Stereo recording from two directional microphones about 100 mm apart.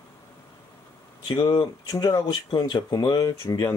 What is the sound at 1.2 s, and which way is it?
Speech, 45° left (ahead or behind).